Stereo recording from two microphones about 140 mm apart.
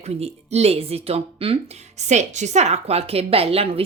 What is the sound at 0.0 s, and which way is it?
Speech, 45° right (ahead or behind).